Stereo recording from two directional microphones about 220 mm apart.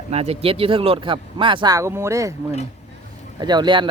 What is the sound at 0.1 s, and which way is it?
Speech, 30° right (ahead or behind).